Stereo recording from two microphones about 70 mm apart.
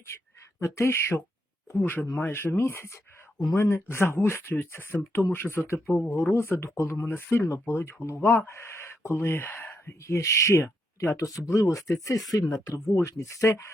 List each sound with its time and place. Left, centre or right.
0.6 s speech: left
1.7 s speech: left
8.4 s speech: left
11.8 s speech: centre
12.3 s speech: left
12.6 s speech: left